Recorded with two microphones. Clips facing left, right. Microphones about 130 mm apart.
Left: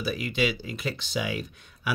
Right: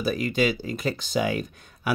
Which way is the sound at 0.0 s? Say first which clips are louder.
Right 4 dB; 45° right (ahead or behind).